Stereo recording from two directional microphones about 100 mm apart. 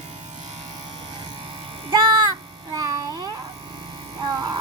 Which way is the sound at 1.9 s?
45° right (ahead or behind).